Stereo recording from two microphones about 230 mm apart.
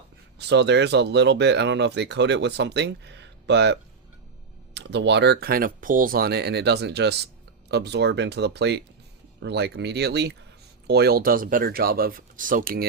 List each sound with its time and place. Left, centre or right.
0.3 s speech: right